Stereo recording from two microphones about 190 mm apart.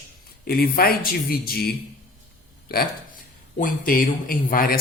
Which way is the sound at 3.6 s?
45° left (ahead or behind).